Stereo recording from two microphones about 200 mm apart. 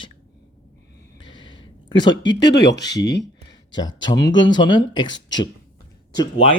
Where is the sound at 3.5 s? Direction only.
20° left (ahead or behind).